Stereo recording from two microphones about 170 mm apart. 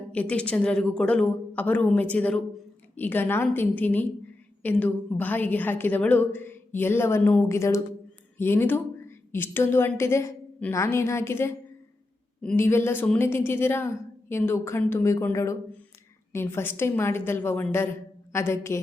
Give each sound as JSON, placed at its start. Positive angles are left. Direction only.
{"t": 0.1, "sound": "a woman's voice", "side_deg": 5}